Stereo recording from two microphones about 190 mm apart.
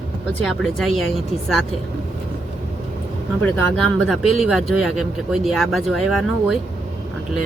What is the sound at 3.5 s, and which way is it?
Speech, centre (ahead or behind).